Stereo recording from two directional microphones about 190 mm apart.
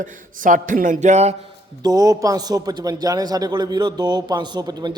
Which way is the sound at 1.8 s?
20° right (ahead or behind).